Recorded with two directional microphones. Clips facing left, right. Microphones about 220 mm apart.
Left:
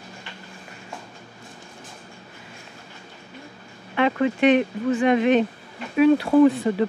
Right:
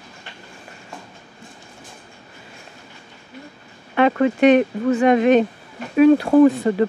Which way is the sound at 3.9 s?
45° right (ahead or behind).